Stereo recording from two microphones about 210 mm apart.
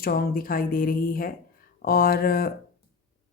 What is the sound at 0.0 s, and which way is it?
Speech, 45° left (ahead or behind).